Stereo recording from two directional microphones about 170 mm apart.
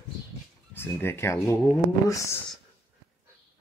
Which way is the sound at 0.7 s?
15° left (ahead or behind).